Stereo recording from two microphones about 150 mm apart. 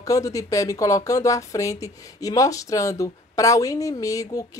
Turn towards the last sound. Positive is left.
turn(degrees=25)  # may be behind; listen again after turning